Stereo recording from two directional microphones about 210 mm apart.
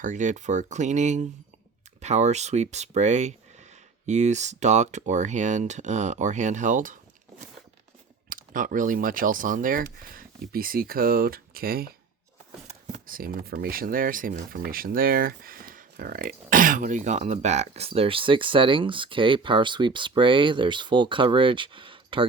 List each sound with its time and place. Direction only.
0.0 s speech: 35° right (ahead or behind)
8.3 s speech: 40° right (ahead or behind); by 22.3 s 25° right (ahead or behind)